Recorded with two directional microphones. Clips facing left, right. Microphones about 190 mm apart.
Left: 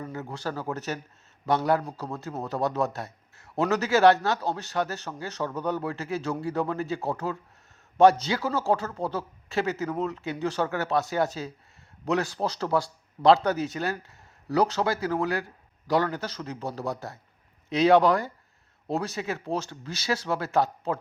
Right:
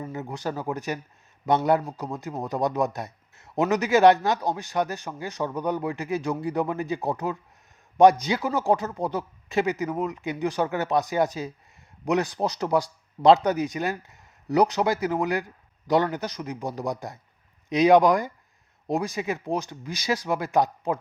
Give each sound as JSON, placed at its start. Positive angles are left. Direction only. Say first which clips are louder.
{"t": 0.1, "sound": "speech", "louder": "right 2 dB", "side_deg": -15}